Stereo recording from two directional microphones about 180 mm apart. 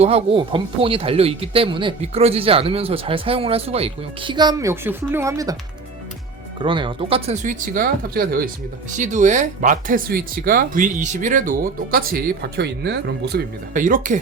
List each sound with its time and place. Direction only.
0.0 s speech: 35° right (ahead or behind); by 5.5 s 20° right (ahead or behind)
6.6 s speech: 25° right (ahead or behind); by 8.4 s 55° right (ahead or behind)
9.0 s speech: 45° right (ahead or behind); by 13.4 s 65° right (ahead or behind)
13.7 s speech: 45° right (ahead or behind)